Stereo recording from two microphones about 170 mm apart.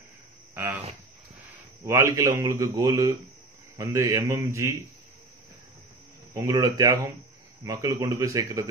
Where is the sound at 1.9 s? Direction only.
20° right (ahead or behind).